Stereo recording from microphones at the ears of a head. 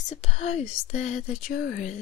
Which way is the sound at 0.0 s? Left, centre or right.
Left.